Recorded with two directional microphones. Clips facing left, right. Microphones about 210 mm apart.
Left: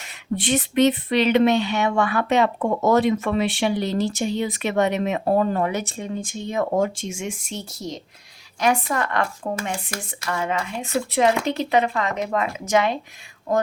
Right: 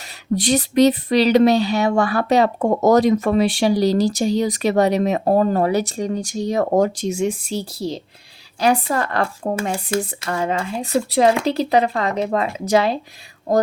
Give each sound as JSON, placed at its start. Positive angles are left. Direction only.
{"t": 0.3, "sound": "speech", "side_deg": -40}